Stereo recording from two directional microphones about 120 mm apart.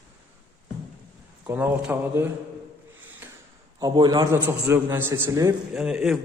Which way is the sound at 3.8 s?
35° right (ahead or behind).